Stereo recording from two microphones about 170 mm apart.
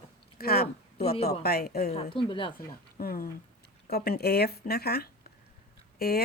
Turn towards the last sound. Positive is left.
turn(degrees=65)  # may be behind; listen again after turning